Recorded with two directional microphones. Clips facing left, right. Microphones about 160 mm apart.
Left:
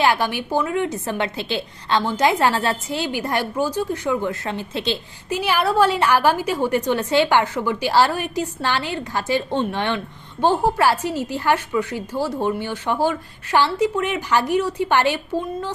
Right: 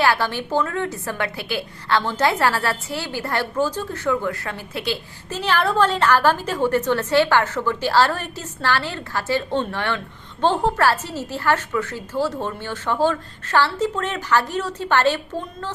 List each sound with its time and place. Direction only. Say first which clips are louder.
0.0 s a woman's voice: left 1 dB; 15° left (ahead or behind)
5.3 s a woman's voice: left 1 dB; 10° left (ahead or behind)